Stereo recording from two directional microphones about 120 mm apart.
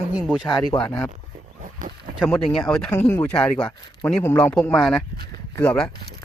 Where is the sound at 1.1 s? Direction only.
90° right.